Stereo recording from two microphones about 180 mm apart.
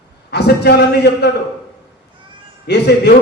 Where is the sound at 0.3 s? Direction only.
65° left (ahead or behind).